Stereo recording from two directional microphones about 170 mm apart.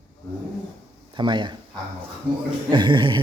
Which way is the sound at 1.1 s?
25° right (ahead or behind).